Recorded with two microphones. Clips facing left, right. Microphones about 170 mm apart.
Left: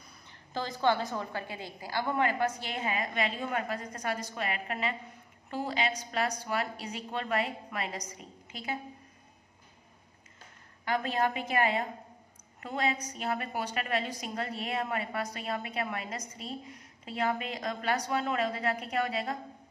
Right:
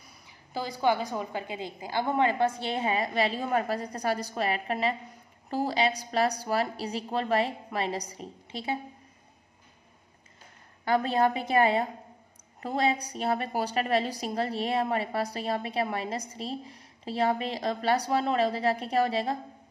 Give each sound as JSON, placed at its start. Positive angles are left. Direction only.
{"t": 0.3, "sound": "a woman's voice", "side_deg": -10}
{"t": 10.9, "sound": "a woman's voice", "side_deg": -35}